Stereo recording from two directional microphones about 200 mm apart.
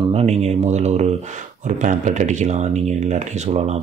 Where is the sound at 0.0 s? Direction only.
30° right (ahead or behind).